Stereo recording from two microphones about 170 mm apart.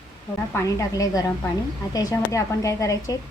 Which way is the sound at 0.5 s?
20° left (ahead or behind).